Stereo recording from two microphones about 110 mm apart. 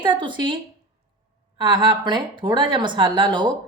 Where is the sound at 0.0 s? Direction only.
45° right (ahead or behind).